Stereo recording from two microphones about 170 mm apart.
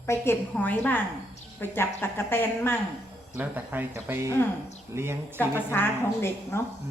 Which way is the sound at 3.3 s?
10° right (ahead or behind).